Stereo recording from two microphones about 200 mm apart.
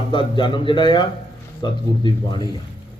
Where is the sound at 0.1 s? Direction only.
25° left (ahead or behind).